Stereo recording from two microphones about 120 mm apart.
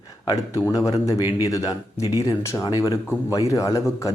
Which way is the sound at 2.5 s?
35° left (ahead or behind).